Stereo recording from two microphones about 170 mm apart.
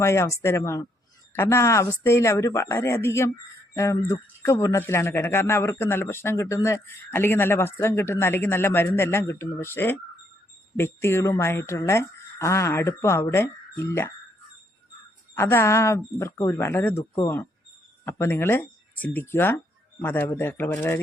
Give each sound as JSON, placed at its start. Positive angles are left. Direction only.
{"t": 0.0, "sound": "speech", "side_deg": 15}
{"t": 15.4, "sound": "speech", "side_deg": 10}